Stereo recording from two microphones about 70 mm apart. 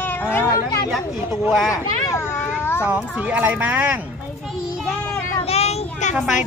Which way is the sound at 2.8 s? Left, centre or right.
Right.